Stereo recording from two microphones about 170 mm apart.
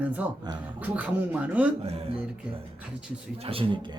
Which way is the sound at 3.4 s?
30° right (ahead or behind).